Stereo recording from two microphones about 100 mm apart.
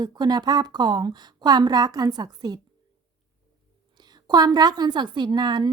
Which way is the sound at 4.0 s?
45° right (ahead or behind).